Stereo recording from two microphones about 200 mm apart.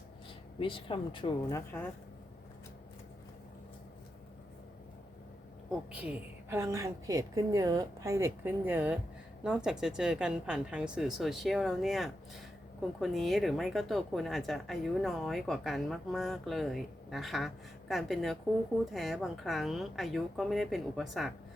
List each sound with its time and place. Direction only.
0.6 s speech: 25° left (ahead or behind)
5.9 s a woman's voice: 5° right (ahead or behind)